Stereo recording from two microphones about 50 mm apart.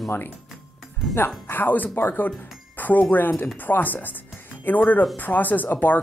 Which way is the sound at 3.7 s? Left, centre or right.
Left.